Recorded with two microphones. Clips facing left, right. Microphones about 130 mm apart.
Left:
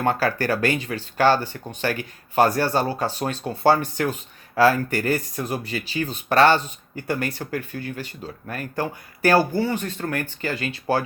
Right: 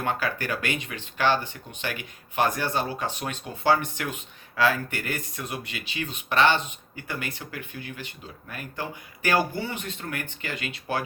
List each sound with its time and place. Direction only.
0.0 s speech: 45° left (ahead or behind)